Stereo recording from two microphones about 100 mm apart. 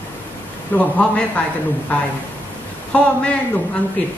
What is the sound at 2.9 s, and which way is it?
Speech, 15° left (ahead or behind).